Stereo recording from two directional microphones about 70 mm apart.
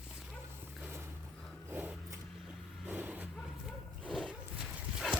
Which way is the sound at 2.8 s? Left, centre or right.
Right.